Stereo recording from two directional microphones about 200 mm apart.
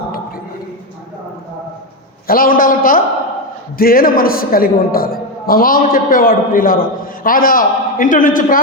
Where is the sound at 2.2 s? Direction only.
45° left (ahead or behind).